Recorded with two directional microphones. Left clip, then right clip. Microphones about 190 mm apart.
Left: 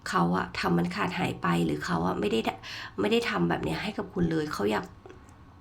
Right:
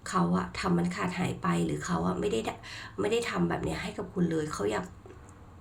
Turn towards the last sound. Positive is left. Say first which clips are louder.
# left 2 dB
turn(degrees=20)  # may be behind; listen again after turning